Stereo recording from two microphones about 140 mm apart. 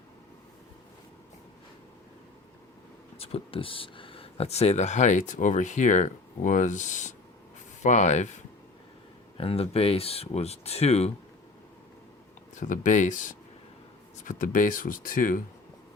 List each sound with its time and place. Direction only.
3.2 s speech: 45° left (ahead or behind)
9.4 s speech: 45° left (ahead or behind)
12.5 s speech: 65° left (ahead or behind)